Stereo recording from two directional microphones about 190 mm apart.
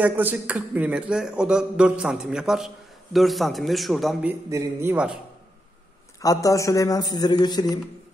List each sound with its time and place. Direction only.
0.0 s speech: 10° right (ahead or behind)
6.2 s speech: 20° left (ahead or behind)